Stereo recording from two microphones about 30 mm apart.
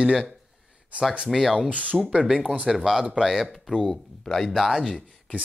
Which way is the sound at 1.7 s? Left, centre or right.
Right.